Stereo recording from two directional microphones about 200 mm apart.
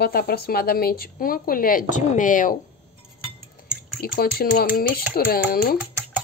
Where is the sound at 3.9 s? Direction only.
45° left (ahead or behind).